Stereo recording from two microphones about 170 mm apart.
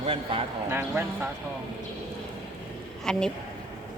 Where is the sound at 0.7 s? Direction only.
15° right (ahead or behind).